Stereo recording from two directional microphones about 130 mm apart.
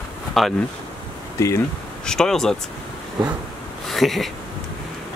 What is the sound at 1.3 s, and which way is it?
Speech, 25° left (ahead or behind).